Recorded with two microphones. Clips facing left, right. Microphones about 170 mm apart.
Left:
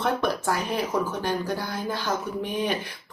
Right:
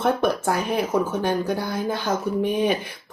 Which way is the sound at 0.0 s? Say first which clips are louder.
Right 4 dB; 50° right (ahead or behind).